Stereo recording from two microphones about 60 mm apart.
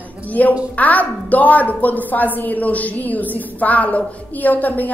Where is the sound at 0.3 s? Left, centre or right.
Left.